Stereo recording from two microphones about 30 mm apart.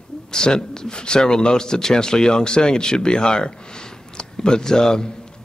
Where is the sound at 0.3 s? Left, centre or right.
Left.